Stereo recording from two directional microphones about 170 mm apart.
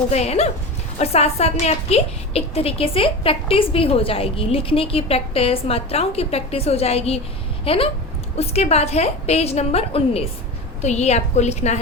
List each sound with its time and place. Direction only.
0.1 s a woman's voice: 40° left (ahead or behind)